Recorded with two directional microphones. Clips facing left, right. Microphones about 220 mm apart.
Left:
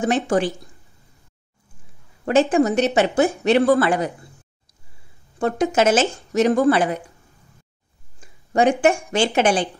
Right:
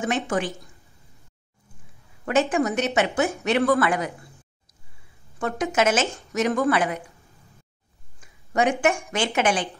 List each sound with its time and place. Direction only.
0.0 s speech: 35° left (ahead or behind)
2.2 s speech: 30° left (ahead or behind)
5.4 s speech: 30° left (ahead or behind)
8.2 s speech: 30° left (ahead or behind)